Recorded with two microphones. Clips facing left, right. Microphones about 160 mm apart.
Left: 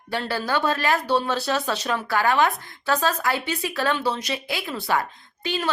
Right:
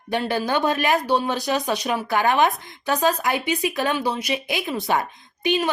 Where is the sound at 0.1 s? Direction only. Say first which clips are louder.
Right 3 dB; 20° right (ahead or behind).